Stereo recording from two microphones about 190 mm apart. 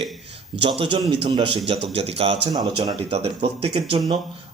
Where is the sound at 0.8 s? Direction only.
25° right (ahead or behind).